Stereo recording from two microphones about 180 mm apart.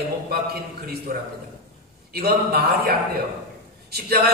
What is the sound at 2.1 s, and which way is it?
Speech, 60° right (ahead or behind).